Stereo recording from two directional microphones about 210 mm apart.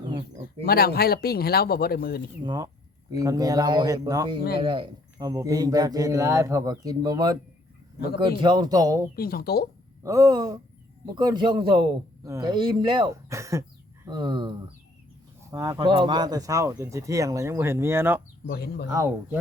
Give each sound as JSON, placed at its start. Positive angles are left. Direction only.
{"t": 0.0, "sound": "bird", "side_deg": -20}
{"t": 0.6, "sound": "speech", "side_deg": 45}
{"t": 2.4, "sound": "a man's voice", "side_deg": -20}
{"t": 9.1, "sound": "speech", "side_deg": 45}
{"t": 10.0, "sound": "a man's voice", "side_deg": -15}
{"t": 15.5, "sound": "speech", "side_deg": -15}
{"t": 18.4, "sound": "speech", "side_deg": 50}
{"t": 18.9, "sound": "speech", "side_deg": -15}